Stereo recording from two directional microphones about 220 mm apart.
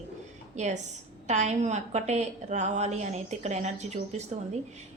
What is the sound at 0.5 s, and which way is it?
A woman's voice, 30° right (ahead or behind).